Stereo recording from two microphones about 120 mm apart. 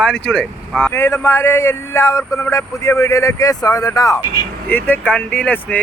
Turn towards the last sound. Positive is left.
turn(degrees=10)  # may be behind; listen again after turning